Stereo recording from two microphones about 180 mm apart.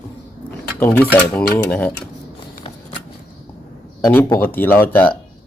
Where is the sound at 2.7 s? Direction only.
35° left (ahead or behind).